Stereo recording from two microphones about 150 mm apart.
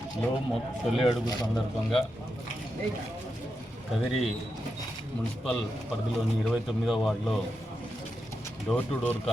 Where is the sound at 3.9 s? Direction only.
Centre (ahead or behind).